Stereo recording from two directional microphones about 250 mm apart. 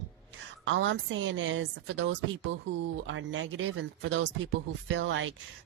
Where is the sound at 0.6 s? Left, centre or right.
Right.